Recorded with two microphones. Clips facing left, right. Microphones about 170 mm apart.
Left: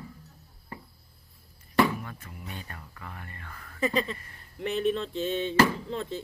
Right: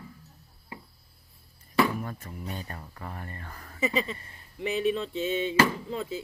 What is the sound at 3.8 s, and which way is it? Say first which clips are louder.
Speech: left 1 dB; centre (ahead or behind).